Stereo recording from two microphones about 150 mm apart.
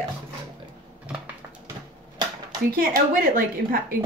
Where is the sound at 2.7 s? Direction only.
75° right (ahead or behind).